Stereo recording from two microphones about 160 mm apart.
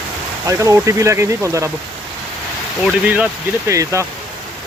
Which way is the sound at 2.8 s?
10° right (ahead or behind).